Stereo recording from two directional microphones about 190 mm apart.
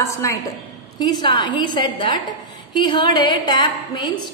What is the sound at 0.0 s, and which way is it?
A woman's voice, 15° left (ahead or behind).